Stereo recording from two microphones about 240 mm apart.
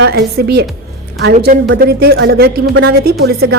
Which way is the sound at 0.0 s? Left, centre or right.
Right.